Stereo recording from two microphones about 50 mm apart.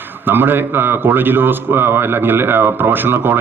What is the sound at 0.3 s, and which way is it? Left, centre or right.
A man's voice, right.